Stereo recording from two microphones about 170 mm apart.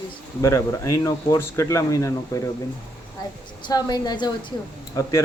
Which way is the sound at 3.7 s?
25° left (ahead or behind).